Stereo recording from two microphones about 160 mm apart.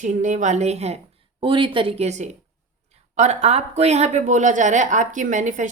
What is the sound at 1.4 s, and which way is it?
Speech, 30° right (ahead or behind).